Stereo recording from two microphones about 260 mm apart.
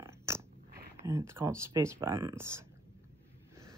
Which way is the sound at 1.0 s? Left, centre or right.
Centre.